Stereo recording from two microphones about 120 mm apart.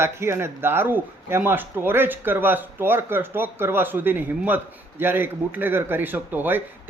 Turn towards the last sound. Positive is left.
turn(degrees=-15)  # may be behind; listen again after turning